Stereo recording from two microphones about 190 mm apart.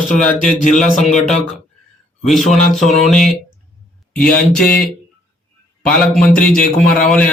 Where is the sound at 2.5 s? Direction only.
40° left (ahead or behind).